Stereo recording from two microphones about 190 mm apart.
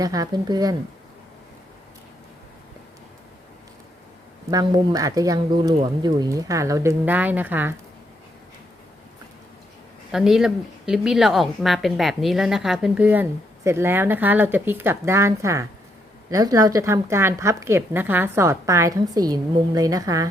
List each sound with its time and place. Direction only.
0.0 s speech: 20° right (ahead or behind)
4.5 s a woman's voice: 20° right (ahead or behind)
10.1 s a woman's voice: centre (ahead or behind); by 20.2 s 20° right (ahead or behind)